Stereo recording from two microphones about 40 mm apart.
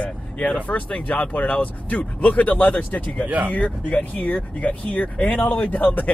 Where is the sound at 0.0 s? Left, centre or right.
Left.